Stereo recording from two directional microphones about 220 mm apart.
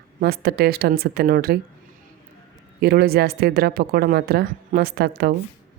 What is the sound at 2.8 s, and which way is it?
Speech, 45° right (ahead or behind).